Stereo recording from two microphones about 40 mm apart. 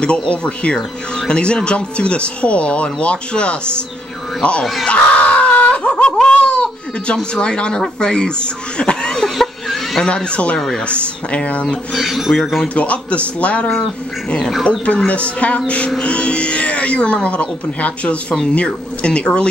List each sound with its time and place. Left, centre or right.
0.3 s speech: left
4.8 s screaming: left
6.2 s baby cry: left
7.3 s speech: left
9.2 s a sound: centre
10.0 s speech: left
11.6 s speech: left
12.0 s speech: centre
12.6 s speech: left
14.6 s speech: left
15.0 s speech: left